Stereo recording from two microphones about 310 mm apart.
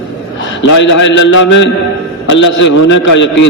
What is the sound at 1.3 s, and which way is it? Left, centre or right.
Speech, left.